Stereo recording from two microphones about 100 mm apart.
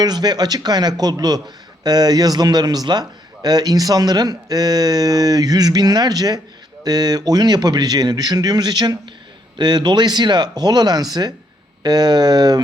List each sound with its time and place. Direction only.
0.0 s a man's voice: 45° right (ahead or behind)